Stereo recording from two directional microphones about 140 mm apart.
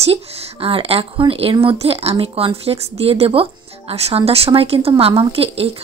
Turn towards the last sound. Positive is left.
turn(degrees=-45)  # may be behind; listen again after turning